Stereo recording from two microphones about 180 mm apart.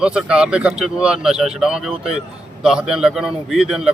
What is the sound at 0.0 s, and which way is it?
A man's voice, 5° right (ahead or behind).